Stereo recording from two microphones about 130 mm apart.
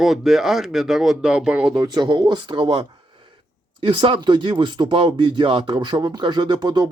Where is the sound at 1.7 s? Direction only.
35° right (ahead or behind).